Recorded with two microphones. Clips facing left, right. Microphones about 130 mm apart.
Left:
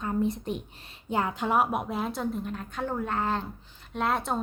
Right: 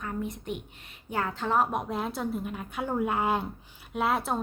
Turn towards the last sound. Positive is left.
turn(degrees=-5)  # may be behind; listen again after turning